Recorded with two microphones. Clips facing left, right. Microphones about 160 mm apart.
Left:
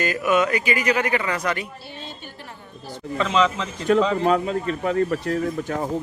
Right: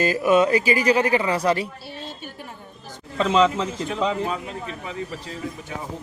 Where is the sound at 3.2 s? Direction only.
30° right (ahead or behind).